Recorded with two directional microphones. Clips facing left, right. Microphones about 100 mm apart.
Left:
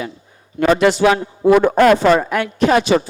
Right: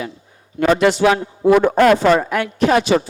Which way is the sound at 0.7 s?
10° right (ahead or behind).